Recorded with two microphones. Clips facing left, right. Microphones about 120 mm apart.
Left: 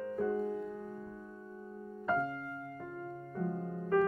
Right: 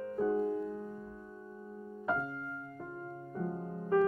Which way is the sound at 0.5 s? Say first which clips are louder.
Right 3 dB; 5° right (ahead or behind).